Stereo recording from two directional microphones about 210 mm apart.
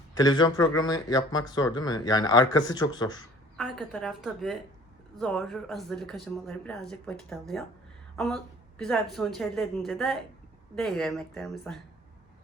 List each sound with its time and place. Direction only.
0.1 s speech: 20° left (ahead or behind)
3.6 s speech: centre (ahead or behind)
8.1 s a sound: centre (ahead or behind)
8.8 s speech: centre (ahead or behind)